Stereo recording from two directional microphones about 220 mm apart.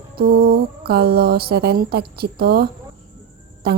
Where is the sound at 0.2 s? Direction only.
40° right (ahead or behind).